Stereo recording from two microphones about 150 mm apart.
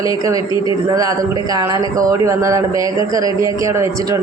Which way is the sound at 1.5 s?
25° right (ahead or behind).